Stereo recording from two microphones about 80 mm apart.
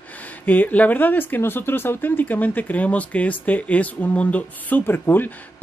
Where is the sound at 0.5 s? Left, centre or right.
Centre.